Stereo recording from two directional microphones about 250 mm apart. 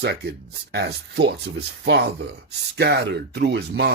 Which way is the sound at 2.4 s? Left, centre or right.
Right.